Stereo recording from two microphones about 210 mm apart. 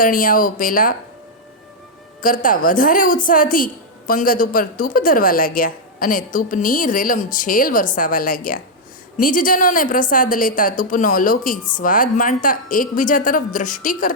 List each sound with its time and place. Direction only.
0.0 s a woman's voice: 40° left (ahead or behind)
2.2 s a woman's voice: 40° left (ahead or behind)